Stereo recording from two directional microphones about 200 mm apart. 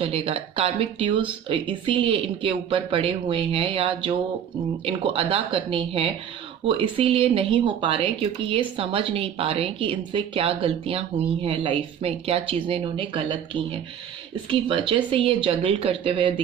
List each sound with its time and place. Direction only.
0.0 s speech: 30° right (ahead or behind)